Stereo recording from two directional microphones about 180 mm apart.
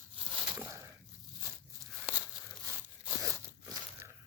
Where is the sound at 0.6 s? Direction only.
10° right (ahead or behind).